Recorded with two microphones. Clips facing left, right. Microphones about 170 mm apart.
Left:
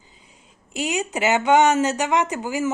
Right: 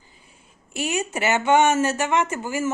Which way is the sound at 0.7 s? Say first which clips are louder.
Left 1 dB; 15° left (ahead or behind).